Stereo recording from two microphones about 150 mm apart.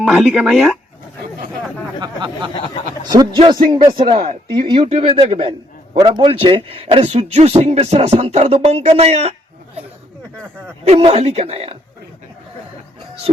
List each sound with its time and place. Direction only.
0.0 s speech: centre (ahead or behind)
2.0 s speech: 30° right (ahead or behind)
10.8 s a woman's voice: 40° right (ahead or behind)